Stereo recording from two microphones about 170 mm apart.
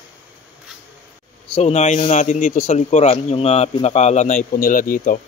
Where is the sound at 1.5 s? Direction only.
40° left (ahead or behind).